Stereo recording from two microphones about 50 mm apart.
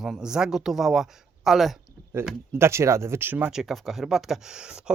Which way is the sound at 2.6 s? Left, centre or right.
Right.